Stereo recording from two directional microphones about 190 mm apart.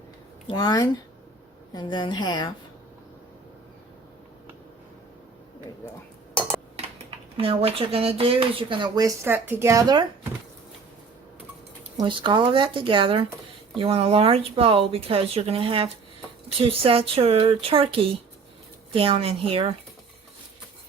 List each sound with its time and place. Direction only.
0.4 s a woman's voice: 20° left (ahead or behind)
7.3 s speech: 30° right (ahead or behind)
11.9 s speech: 25° right (ahead or behind)